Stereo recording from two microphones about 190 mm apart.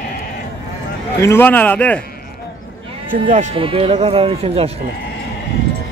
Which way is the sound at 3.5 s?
30° right (ahead or behind).